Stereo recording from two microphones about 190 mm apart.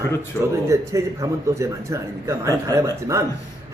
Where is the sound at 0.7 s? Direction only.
15° right (ahead or behind).